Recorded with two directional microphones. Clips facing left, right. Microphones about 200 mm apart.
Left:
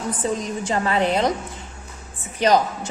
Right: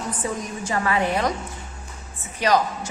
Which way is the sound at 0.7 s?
30° left (ahead or behind).